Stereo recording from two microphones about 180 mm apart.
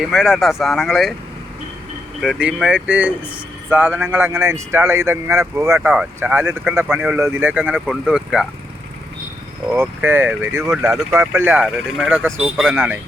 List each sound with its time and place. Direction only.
0.0 s speech: centre (ahead or behind)
2.2 s speech: 5° right (ahead or behind)
9.7 s speech: 10° right (ahead or behind)